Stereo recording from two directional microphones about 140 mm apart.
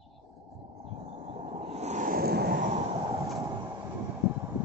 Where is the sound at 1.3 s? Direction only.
50° right (ahead or behind); by 2.8 s 80° right.